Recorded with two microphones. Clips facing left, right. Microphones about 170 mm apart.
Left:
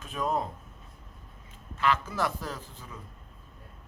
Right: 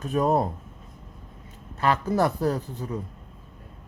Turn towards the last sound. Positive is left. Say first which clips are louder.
# right 12 dB
turn(degrees=-40)  # may be behind; listen again after turning